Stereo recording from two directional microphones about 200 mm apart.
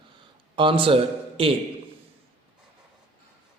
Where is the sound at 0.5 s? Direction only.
25° right (ahead or behind).